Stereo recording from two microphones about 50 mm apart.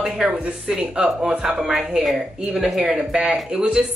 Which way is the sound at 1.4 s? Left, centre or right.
Centre.